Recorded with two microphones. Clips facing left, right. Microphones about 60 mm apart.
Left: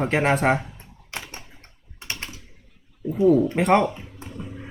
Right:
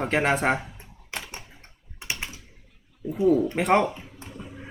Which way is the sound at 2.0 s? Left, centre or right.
Centre.